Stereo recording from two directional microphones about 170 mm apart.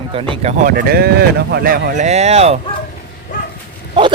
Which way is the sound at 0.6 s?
65° right (ahead or behind).